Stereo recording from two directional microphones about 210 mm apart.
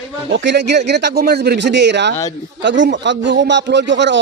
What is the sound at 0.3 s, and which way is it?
A man's voice, 55° right (ahead or behind).